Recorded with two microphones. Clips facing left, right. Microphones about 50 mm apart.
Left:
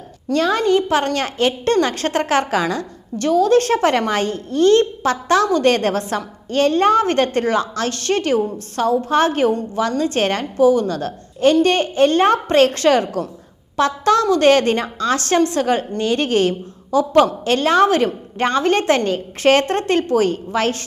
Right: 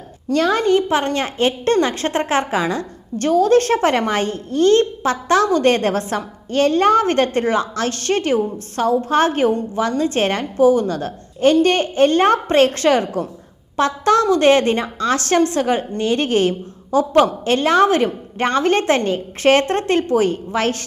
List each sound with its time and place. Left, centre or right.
0.3 s a woman's voice: right